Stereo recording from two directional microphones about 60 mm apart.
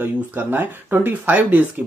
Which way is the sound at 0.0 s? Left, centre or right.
Right.